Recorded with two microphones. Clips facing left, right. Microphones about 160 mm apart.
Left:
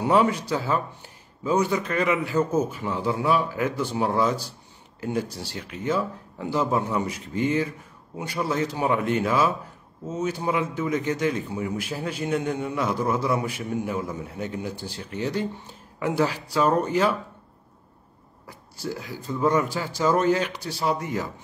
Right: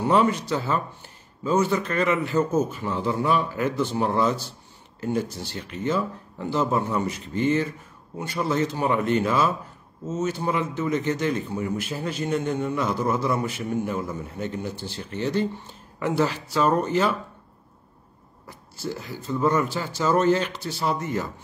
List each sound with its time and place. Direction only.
0.0 s a man's voice: 10° left (ahead or behind)
19.0 s a man's voice: 10° left (ahead or behind)